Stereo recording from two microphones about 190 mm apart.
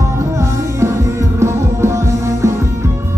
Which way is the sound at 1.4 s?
15° right (ahead or behind).